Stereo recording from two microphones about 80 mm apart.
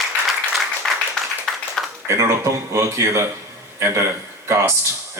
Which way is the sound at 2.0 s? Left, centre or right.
Right.